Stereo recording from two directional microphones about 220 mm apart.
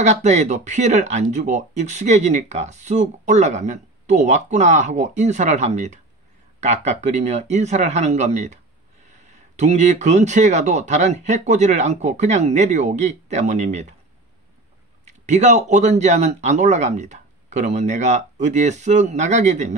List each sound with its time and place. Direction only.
0.0 s speech: 30° right (ahead or behind)
15.0 s speech: 30° right (ahead or behind)